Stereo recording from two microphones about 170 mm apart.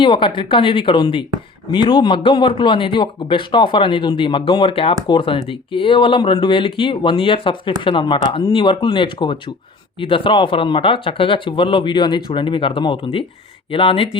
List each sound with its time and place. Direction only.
0.0 s speech: 30° left (ahead or behind)